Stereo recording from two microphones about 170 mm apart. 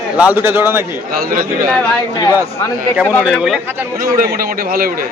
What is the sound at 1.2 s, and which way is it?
Speech, 55° right (ahead or behind).